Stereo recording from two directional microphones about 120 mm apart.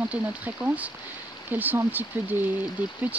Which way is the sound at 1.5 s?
15° right (ahead or behind).